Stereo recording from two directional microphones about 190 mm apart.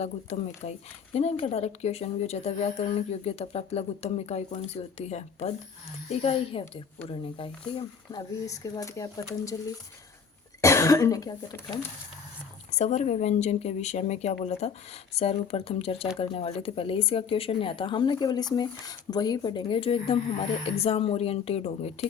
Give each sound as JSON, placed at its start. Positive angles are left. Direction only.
{"t": 0.0, "sound": "speech", "side_deg": 35}
{"t": 10.6, "sound": "speech", "side_deg": 15}
{"t": 12.7, "sound": "speech", "side_deg": 35}